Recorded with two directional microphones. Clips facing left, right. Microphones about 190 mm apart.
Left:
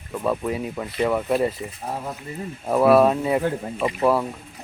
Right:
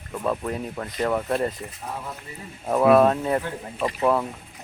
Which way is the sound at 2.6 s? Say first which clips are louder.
Left 1 dB; 5° left (ahead or behind).